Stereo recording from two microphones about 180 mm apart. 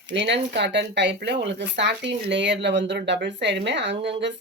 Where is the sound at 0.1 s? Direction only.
80° right.